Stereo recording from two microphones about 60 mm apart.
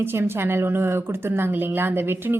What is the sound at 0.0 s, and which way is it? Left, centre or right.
A woman's voice, right.